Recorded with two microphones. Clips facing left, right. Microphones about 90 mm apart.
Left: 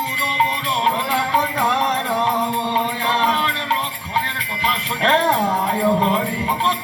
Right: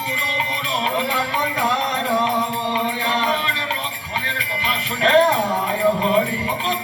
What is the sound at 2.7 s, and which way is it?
Music, 35° left (ahead or behind).